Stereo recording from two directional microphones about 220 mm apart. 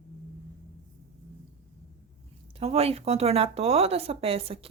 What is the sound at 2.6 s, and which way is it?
Speech, 25° right (ahead or behind).